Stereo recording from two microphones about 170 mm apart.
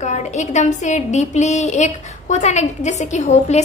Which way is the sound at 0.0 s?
45° left (ahead or behind).